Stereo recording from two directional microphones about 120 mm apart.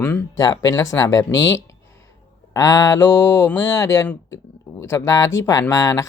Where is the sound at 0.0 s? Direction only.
15° left (ahead or behind).